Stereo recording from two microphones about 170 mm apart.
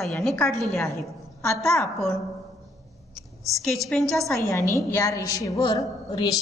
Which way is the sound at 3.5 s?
Centre (ahead or behind).